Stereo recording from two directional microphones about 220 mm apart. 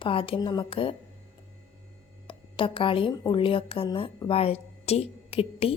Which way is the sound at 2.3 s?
25° left (ahead or behind).